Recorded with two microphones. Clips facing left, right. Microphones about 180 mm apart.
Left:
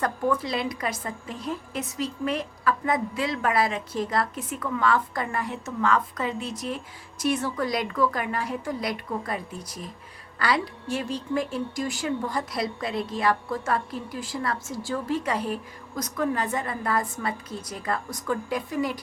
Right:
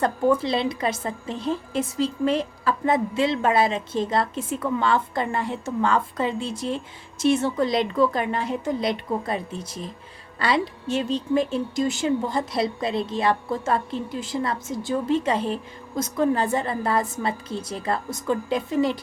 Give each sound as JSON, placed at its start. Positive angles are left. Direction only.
{"t": 0.0, "sound": "a woman's voice", "side_deg": -25}